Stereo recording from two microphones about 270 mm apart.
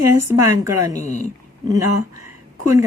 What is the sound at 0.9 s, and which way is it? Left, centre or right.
Speech, left.